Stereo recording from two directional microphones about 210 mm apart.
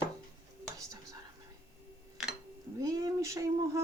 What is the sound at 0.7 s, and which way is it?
Whispering, 15° right (ahead or behind).